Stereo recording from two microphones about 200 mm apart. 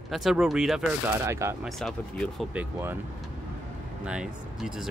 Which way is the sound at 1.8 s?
Centre (ahead or behind).